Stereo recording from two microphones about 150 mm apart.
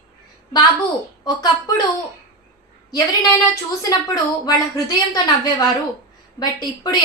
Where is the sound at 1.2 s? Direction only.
25° left (ahead or behind).